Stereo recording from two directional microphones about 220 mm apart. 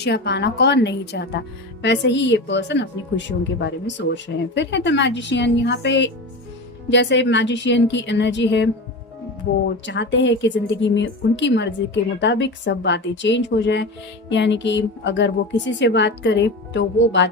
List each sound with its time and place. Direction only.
0.0 s a woman's voice: 50° left (ahead or behind)
9.8 s a woman's voice: 55° left (ahead or behind)